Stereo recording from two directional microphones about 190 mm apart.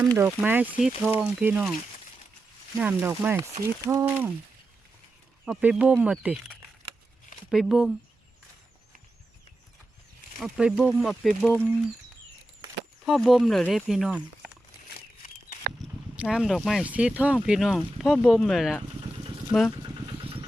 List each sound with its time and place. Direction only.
0.0 s speech: 15° right (ahead or behind)
2.7 s speech: 10° right (ahead or behind)
5.5 s speech: 5° right (ahead or behind)
10.4 s speech: centre (ahead or behind)
13.1 s speech: centre (ahead or behind)
15.8 s speech: 5° right (ahead or behind)
19.7 s vehicle: 25° right (ahead or behind)